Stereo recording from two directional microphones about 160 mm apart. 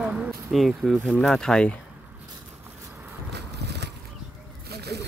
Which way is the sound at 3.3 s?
90° right.